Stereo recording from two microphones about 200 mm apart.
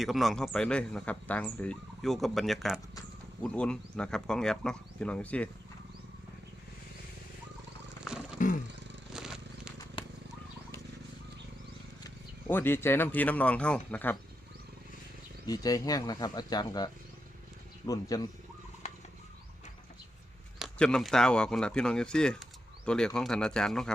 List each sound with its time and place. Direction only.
0.0 s speech: centre (ahead or behind)
8.4 s roaring cats: 40° left (ahead or behind)
9.1 s a sound: 5° right (ahead or behind)
12.0 s speech: 10° left (ahead or behind)
15.4 s speech: 20° left (ahead or behind)
20.6 s speech: 5° left (ahead or behind)